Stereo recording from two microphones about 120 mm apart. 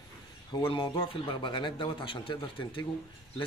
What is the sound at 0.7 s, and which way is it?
A man's voice, 40° left (ahead or behind).